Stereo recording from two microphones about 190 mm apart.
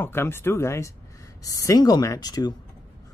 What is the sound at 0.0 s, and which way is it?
Speech, 15° left (ahead or behind).